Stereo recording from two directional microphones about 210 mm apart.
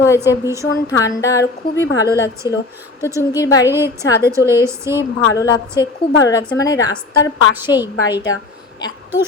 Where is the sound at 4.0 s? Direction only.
50° left (ahead or behind).